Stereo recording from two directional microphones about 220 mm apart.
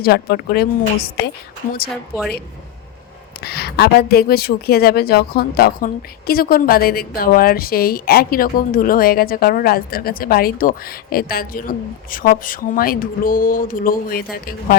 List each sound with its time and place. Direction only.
0.0 s speech: 45° left (ahead or behind)
1.9 s a woman's voice: centre (ahead or behind)
3.4 s speech: 45° left (ahead or behind)